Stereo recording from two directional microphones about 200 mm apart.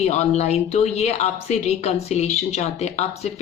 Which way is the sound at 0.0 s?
35° left (ahead or behind).